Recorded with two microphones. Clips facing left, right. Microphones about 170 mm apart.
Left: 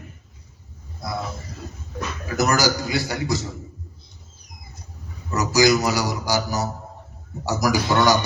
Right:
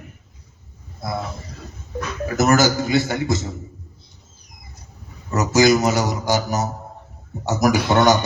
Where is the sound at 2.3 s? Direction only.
20° right (ahead or behind).